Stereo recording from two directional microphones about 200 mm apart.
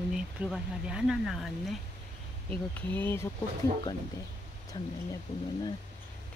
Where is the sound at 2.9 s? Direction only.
10° left (ahead or behind).